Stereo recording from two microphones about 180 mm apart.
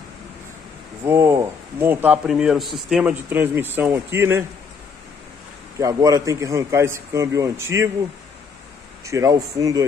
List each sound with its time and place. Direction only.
1.0 s a man's voice: 15° right (ahead or behind)
5.8 s a man's voice: 20° right (ahead or behind)
9.0 s speech: 15° right (ahead or behind)